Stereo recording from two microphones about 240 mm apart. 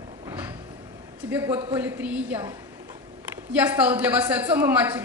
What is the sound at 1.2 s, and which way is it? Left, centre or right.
A man's voice, centre.